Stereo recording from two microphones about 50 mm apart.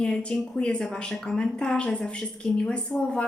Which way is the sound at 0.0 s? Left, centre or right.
Centre.